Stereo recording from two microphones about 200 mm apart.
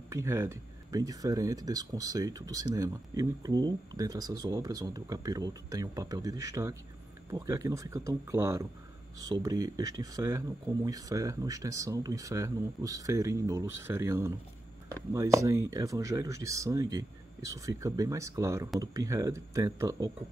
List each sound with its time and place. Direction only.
0.1 s speech: 15° right (ahead or behind)